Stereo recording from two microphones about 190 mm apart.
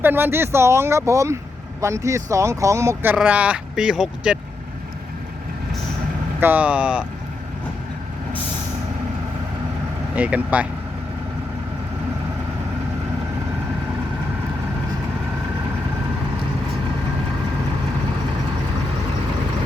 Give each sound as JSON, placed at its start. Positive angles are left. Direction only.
{"t": 0.0, "sound": "speech", "side_deg": -10}
{"t": 6.4, "sound": "speech", "side_deg": -10}
{"t": 10.2, "sound": "speech", "side_deg": -10}